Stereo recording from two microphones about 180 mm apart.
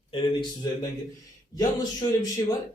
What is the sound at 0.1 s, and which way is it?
Speech, 25° left (ahead or behind).